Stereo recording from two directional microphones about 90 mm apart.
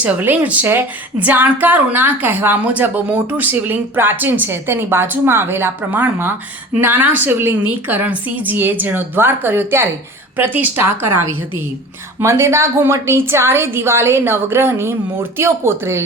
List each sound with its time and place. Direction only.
0.0 s a woman's voice: 20° right (ahead or behind)
12.2 s a woman's voice: 30° right (ahead or behind)